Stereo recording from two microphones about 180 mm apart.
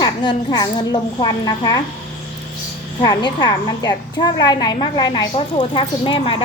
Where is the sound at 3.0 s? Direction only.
25° left (ahead or behind).